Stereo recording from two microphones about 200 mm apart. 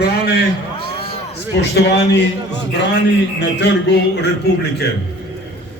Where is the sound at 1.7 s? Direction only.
60° left (ahead or behind).